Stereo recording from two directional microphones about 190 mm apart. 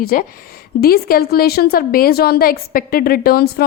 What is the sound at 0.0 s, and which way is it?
A woman's voice, 50° left (ahead or behind).